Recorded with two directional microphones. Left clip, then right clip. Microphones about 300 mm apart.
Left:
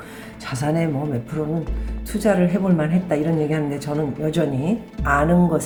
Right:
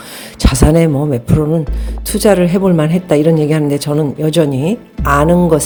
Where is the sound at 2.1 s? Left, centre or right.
Right.